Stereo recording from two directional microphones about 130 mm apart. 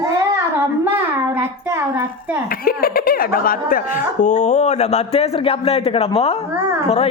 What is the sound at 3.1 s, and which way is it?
Speech, 90° left.